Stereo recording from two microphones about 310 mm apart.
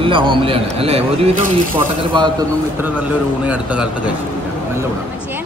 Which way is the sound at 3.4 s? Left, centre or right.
Centre.